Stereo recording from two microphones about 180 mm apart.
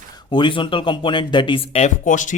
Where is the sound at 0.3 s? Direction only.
25° left (ahead or behind).